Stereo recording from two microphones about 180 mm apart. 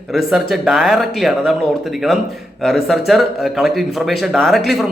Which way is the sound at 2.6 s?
Centre (ahead or behind).